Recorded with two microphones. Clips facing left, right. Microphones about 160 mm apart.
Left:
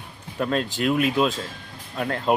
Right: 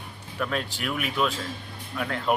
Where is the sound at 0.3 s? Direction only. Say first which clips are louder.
Left 5 dB; 30° left (ahead or behind).